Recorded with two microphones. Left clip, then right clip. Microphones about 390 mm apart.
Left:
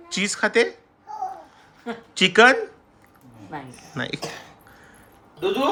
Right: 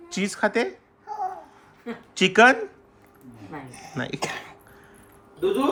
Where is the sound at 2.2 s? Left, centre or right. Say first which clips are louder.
Left 1 dB; centre.